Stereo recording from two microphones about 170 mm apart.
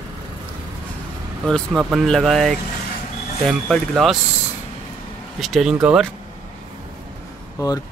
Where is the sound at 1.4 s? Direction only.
Centre (ahead or behind).